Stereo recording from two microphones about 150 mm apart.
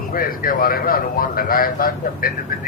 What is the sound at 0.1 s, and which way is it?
Speech, 70° left (ahead or behind).